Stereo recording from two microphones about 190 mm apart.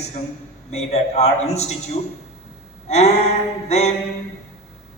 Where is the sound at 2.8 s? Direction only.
35° left (ahead or behind).